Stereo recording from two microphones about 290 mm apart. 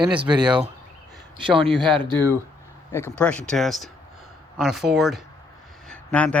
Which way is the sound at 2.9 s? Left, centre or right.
Centre.